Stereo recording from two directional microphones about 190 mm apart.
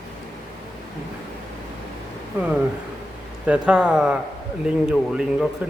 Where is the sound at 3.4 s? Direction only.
5° right (ahead or behind).